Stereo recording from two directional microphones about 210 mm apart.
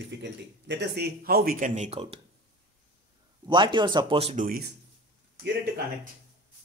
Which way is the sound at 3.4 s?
20° right (ahead or behind).